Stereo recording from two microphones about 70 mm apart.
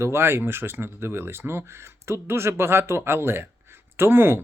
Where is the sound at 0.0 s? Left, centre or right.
Right.